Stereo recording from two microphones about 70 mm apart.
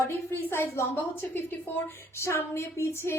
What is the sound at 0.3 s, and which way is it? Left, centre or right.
A woman's voice, left.